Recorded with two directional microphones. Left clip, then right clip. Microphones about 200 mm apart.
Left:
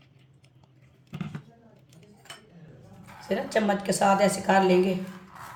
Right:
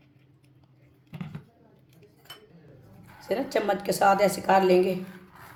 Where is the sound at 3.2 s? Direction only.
40° right (ahead or behind).